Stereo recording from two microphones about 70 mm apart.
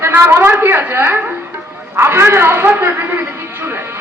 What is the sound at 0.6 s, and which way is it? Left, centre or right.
A woman's voice, right.